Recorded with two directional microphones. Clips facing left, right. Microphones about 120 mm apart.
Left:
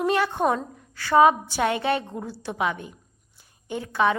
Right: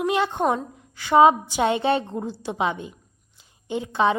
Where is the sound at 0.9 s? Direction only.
15° right (ahead or behind).